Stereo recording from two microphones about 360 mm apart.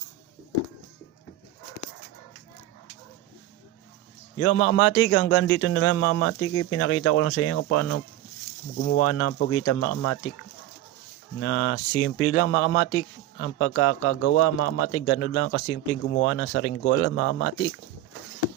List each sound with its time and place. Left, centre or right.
4.4 s speech: left
11.3 s speech: left